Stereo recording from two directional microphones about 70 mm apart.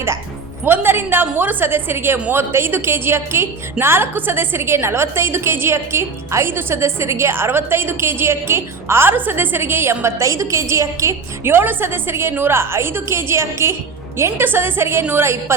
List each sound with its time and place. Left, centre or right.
0.6 s a woman's voice: right
11.5 s a woman's voice: right